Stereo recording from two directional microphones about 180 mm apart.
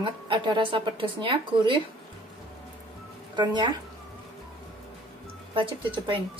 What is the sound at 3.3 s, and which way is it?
Speech, 25° right (ahead or behind).